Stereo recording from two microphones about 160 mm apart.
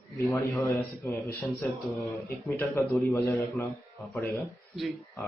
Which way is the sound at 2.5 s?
20° left (ahead or behind).